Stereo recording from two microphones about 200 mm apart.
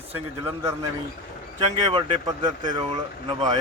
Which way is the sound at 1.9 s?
25° right (ahead or behind).